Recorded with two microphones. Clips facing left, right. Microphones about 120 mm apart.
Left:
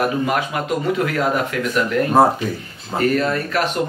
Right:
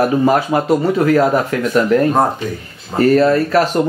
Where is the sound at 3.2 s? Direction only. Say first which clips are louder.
Right 8 dB; 35° right (ahead or behind).